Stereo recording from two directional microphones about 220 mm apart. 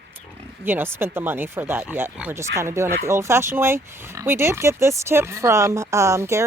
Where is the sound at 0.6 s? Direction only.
10° right (ahead or behind).